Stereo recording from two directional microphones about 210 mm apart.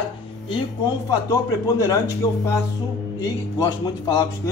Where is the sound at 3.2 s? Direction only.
15° left (ahead or behind).